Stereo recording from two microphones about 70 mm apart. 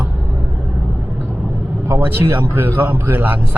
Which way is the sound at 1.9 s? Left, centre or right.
Right.